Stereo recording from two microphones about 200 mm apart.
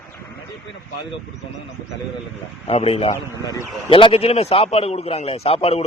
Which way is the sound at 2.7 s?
30° left (ahead or behind).